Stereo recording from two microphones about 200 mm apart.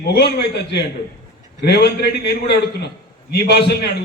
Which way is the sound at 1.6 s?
55° left (ahead or behind).